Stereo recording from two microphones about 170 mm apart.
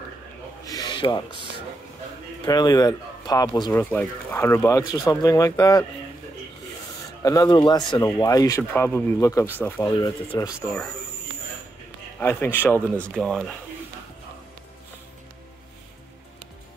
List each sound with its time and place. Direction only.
0.7 s a sound: 25° left (ahead or behind)
2.4 s speech: 25° left (ahead or behind)
3.7 s speech: 10° left (ahead or behind)
7.2 s speech: 25° left (ahead or behind)
9.9 s speech: 25° left (ahead or behind)
12.2 s speech: 10° left (ahead or behind)